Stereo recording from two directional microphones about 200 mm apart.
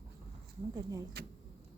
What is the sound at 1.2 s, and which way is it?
Speech, 55° right (ahead or behind).